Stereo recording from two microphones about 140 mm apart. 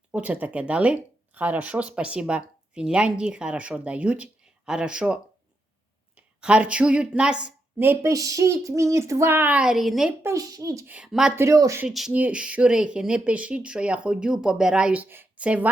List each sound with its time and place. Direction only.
0.1 s a woman's voice: 10° right (ahead or behind)
10.2 s speech: 25° right (ahead or behind)
10.9 s speech: 5° right (ahead or behind)
11.3 s speech: 25° right (ahead or behind)
11.8 s a woman's voice: 5° right (ahead or behind)